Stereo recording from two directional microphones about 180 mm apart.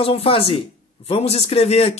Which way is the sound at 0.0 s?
30° left (ahead or behind).